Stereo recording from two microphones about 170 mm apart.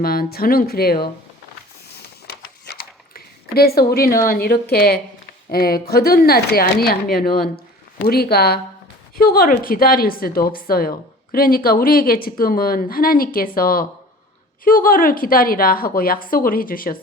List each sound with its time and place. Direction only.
0.0 s a woman's voice: 60° left (ahead or behind)
2.0 s a sound: 70° left (ahead or behind)
4.7 s a woman's voice: 65° left (ahead or behind)